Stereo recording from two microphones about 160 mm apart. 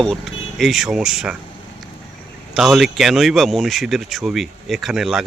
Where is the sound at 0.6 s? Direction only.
Centre (ahead or behind).